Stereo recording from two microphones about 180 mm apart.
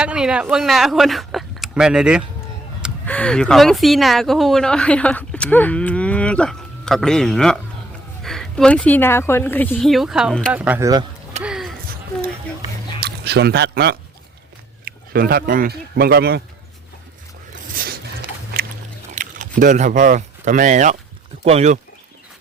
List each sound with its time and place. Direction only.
0.0 s speech: 5° right (ahead or behind); by 9.7 s 10° left (ahead or behind)
9.7 s speech: centre (ahead or behind); by 11.0 s 15° right (ahead or behind)
11.4 s a sound: centre (ahead or behind)
13.0 s speech: 60° right (ahead or behind)
17.5 s a sound: 50° right (ahead or behind)
19.1 s speech: 45° right (ahead or behind)